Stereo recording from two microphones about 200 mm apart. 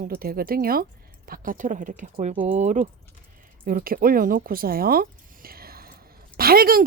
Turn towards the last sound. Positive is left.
turn(degrees=-45)  # may be behind; listen again after turning